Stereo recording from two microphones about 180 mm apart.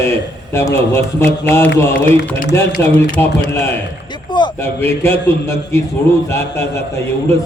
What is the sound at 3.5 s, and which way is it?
Speech, 15° left (ahead or behind).